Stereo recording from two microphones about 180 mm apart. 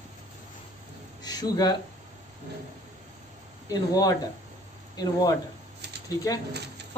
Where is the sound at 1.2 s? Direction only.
20° left (ahead or behind).